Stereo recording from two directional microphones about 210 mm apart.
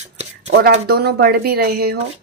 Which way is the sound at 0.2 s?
35° right (ahead or behind).